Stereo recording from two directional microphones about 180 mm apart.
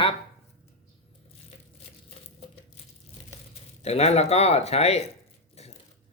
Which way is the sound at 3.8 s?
35° left (ahead or behind).